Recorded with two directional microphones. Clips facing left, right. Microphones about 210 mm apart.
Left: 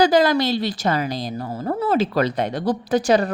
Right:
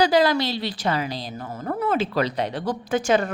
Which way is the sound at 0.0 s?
45° left (ahead or behind).